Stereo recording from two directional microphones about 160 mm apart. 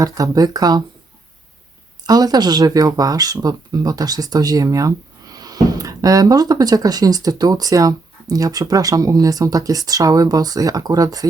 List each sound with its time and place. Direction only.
0.0 s speech: 20° right (ahead or behind)
2.0 s speech: 25° right (ahead or behind)